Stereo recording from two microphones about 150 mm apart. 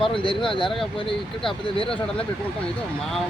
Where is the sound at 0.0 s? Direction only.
35° left (ahead or behind).